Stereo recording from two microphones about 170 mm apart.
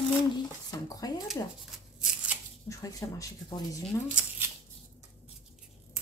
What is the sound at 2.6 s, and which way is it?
Speech, 20° left (ahead or behind).